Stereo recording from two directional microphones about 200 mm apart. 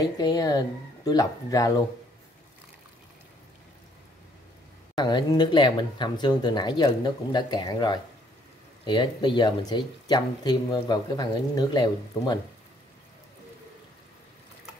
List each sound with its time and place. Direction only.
0.0 s speech: 20° left (ahead or behind)
4.9 s speech: 20° left (ahead or behind)